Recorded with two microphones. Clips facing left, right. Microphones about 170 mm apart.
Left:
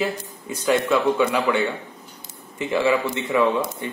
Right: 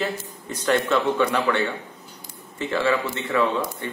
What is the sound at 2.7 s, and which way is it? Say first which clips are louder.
A man's voice: left 3 dB; 15° left (ahead or behind).